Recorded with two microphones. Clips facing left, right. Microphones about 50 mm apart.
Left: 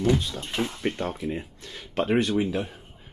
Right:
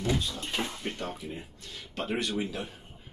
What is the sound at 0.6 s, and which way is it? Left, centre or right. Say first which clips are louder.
Speech: left 7 dB; centre.